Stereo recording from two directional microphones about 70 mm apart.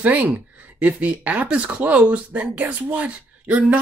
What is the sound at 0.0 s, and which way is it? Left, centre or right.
Speech, right.